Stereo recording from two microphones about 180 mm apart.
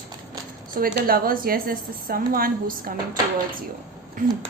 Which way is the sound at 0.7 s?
55° right (ahead or behind).